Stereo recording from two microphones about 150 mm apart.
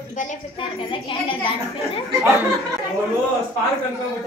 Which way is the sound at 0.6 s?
35° left (ahead or behind).